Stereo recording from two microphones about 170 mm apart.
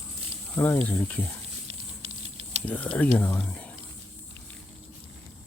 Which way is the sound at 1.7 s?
40° right (ahead or behind).